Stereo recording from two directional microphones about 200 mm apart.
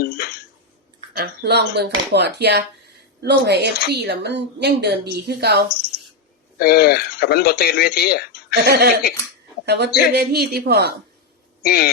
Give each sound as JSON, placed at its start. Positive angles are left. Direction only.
{"t": 0.0, "sound": "a sound", "side_deg": 50}
{"t": 1.1, "sound": "a woman's voice", "side_deg": -50}
{"t": 6.6, "sound": "speech", "side_deg": 50}
{"t": 8.6, "sound": "a woman's voice", "side_deg": -55}
{"t": 11.6, "sound": "speech", "side_deg": 50}